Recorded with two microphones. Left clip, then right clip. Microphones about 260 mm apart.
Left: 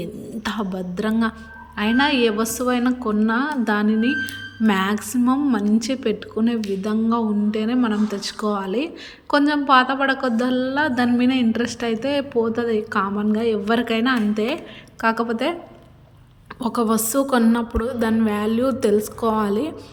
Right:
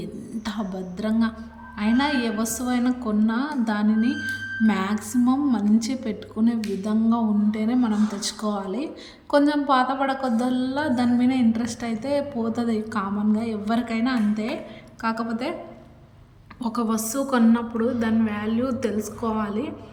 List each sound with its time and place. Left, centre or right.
0.0 s throat clearing: centre
1.7 s a woman's voice: centre
16.6 s a woman's voice: centre